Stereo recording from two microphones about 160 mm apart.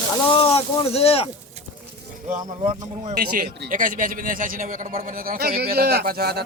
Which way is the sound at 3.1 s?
60° right (ahead or behind).